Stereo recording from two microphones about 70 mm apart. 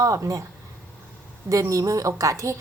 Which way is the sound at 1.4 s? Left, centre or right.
Right.